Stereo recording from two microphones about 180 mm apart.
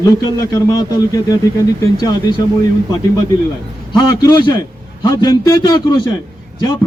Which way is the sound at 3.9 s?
25° left (ahead or behind).